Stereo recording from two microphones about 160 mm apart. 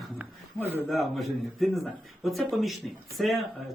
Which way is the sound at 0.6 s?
15° right (ahead or behind).